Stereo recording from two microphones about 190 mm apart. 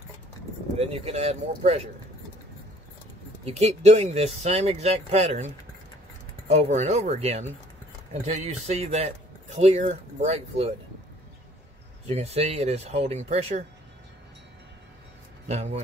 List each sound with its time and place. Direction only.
0.7 s speech: 35° right (ahead or behind)
3.4 s speech: 35° right (ahead or behind)
12.1 s speech: 35° right (ahead or behind)
15.4 s speech: 35° right (ahead or behind)